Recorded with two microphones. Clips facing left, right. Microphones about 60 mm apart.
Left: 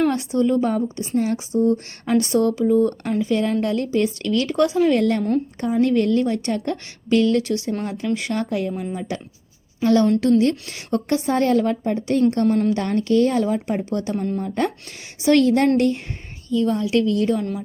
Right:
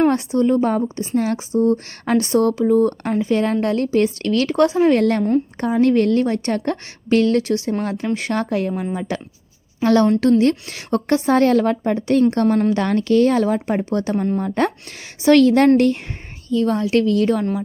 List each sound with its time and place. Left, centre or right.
0.3 s speech: right
1.1 s speech: right
4.7 s speech: right
4.9 s speech: right
9.0 s a woman's voice: right
10.2 s a woman's voice: right
12.7 s a woman's voice: right
15.2 s a woman's voice: right
16.5 s a woman's voice: right
17.1 s a woman's voice: right